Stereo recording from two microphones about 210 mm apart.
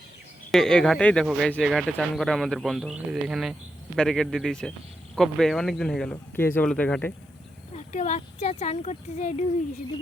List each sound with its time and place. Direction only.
0.5 s speech: 5° left (ahead or behind)
7.8 s speech: 35° left (ahead or behind)